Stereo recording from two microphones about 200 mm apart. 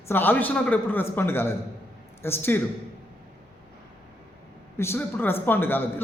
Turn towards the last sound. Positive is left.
turn(degrees=10)  # may be behind; listen again after turning